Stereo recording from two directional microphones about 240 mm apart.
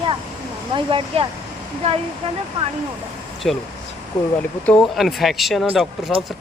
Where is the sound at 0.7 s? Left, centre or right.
Right.